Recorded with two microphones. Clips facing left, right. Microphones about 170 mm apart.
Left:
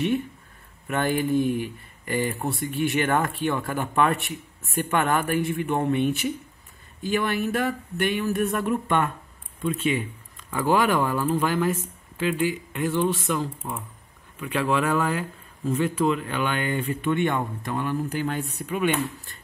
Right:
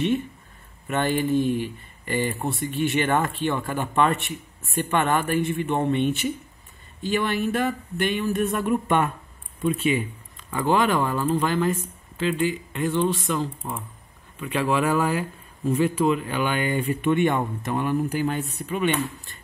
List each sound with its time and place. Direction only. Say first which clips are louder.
0.8 s speech: right 1 dB; centre (ahead or behind)
8.8 s speech: right 2 dB; 15° right (ahead or behind)
10.5 s speech: even; 5° left (ahead or behind)
14.4 s speech: right 1 dB; centre (ahead or behind)
18.3 s speech: right 1 dB; centre (ahead or behind)